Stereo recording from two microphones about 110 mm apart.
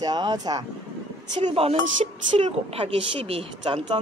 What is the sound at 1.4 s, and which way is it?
Speech, 60° right (ahead or behind).